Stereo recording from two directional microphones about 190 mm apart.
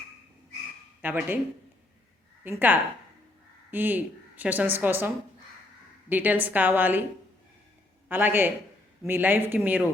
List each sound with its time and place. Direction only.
1.0 s a woman's voice: 10° right (ahead or behind)
2.4 s a woman's voice: 10° right (ahead or behind)
8.0 s a man's voice: 10° right (ahead or behind)